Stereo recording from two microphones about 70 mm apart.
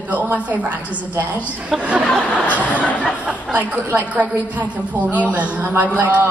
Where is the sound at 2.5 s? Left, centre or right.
Left.